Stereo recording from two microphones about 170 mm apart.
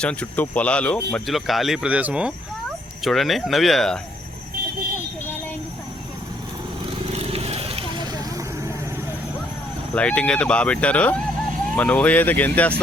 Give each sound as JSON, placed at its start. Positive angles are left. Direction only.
{"t": 0.0, "sound": "speech", "side_deg": 5}
{"t": 7.2, "sound": "vehicle", "side_deg": -35}
{"t": 9.9, "sound": "speech", "side_deg": 5}